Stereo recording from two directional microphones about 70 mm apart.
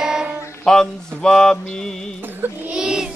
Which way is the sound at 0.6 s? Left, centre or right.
Centre.